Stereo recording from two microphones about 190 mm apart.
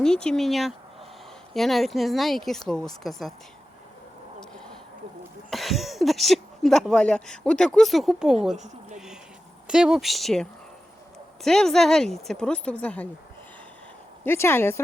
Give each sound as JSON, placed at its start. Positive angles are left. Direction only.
{"t": 0.0, "sound": "speech", "side_deg": 5}
{"t": 5.5, "sound": "speech", "side_deg": 0}
{"t": 8.5, "sound": "speech", "side_deg": -40}
{"t": 9.6, "sound": "speech", "side_deg": -5}
{"t": 14.3, "sound": "speech", "side_deg": 10}